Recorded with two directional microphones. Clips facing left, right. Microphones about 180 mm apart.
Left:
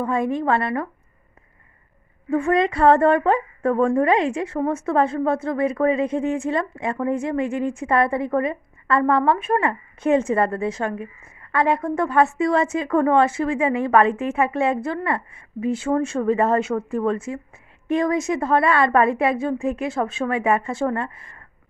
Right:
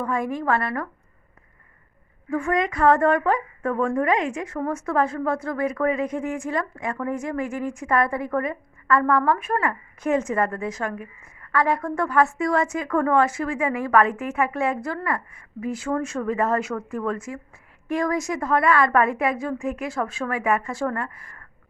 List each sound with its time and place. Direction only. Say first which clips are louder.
0.0 s a woman's voice: left 4 dB; 25° left (ahead or behind)
2.3 s a woman's voice: left 4 dB; 25° left (ahead or behind)